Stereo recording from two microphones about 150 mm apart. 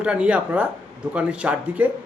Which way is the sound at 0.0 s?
10° right (ahead or behind).